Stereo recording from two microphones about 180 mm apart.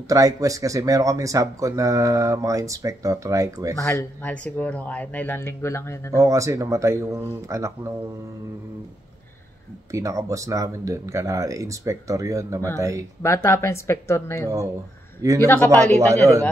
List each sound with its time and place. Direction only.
0.1 s speech: 20° right (ahead or behind)
3.8 s speech: 10° left (ahead or behind)
6.1 s speech: 15° right (ahead or behind)
9.8 s speech: 15° right (ahead or behind)
13.2 s speech: 15° left (ahead or behind)
16.1 s speech: 15° right (ahead or behind)